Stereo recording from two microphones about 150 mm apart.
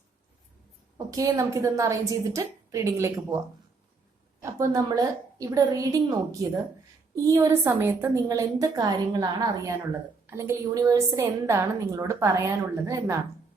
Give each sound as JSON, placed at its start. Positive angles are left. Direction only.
{"t": 0.9, "sound": "a woman's voice", "side_deg": -25}
{"t": 4.5, "sound": "a woman's voice", "side_deg": -20}